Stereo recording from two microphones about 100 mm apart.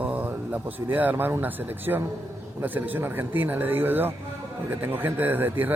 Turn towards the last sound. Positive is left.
turn(degrees=-20)  # may be behind; listen again after turning